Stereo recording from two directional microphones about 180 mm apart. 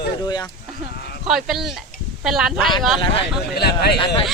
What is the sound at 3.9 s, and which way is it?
Speech, 30° left (ahead or behind).